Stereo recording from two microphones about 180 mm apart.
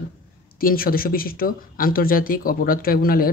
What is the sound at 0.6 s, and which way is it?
Speech, 55° left (ahead or behind).